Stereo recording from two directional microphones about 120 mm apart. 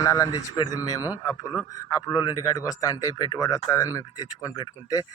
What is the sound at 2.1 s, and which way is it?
Speech, 30° left (ahead or behind).